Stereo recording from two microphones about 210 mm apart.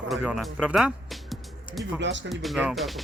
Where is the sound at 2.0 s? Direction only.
60° right (ahead or behind).